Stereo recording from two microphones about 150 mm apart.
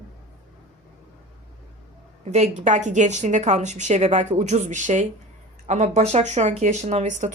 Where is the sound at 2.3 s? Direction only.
50° right (ahead or behind).